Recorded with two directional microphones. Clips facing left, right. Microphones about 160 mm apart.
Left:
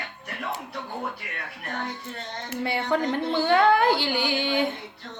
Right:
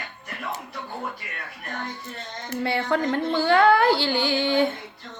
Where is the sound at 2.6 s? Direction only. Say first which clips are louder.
Right 1 dB; 15° left (ahead or behind).